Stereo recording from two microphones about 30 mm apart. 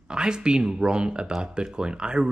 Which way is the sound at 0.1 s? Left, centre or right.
Right.